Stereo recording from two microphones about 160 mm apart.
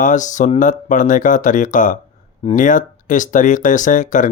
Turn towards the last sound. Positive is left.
turn(degrees=55)  # may be behind; listen again after turning